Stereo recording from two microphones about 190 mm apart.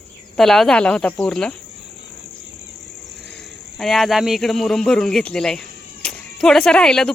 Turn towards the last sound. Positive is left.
turn(degrees=5)  # may be behind; listen again after turning